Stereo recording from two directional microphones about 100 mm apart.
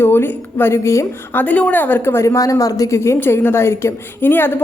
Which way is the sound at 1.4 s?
15° left (ahead or behind).